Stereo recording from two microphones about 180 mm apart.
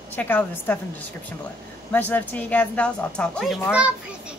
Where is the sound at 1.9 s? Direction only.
10° left (ahead or behind).